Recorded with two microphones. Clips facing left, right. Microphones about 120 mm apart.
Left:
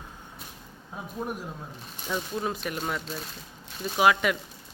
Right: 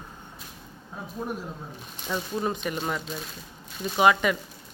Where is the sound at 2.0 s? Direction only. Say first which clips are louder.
Right 2 dB; centre (ahead or behind).